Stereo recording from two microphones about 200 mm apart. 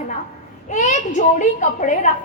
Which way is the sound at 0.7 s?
35° left (ahead or behind).